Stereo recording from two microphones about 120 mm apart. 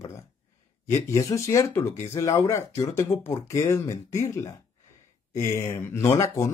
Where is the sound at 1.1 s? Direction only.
25° left (ahead or behind).